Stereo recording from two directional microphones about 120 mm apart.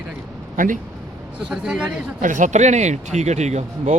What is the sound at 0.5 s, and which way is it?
Speech, 90° right.